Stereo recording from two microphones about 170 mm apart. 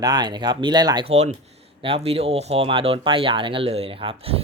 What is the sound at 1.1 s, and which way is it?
Speech, 40° right (ahead or behind).